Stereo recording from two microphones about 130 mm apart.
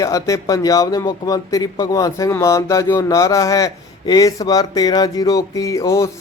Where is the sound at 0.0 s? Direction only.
25° left (ahead or behind).